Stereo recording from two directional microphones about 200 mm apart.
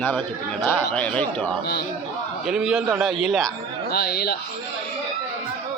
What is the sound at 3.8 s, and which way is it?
Speech, 50° left (ahead or behind).